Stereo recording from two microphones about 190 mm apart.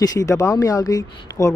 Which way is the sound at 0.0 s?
20° left (ahead or behind).